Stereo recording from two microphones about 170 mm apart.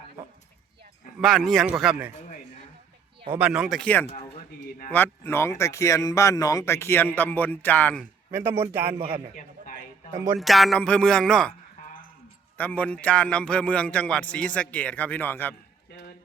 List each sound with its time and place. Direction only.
1.2 s speech: centre (ahead or behind)
3.3 s speech: 5° right (ahead or behind)
4.1 s a sound: 40° left (ahead or behind)
4.9 s speech: 10° left (ahead or behind)
8.3 s speech: 15° right (ahead or behind)
9.0 s a man's voice: 30° right (ahead or behind)
10.3 s speech: centre (ahead or behind)
12.5 s speech: 10° left (ahead or behind)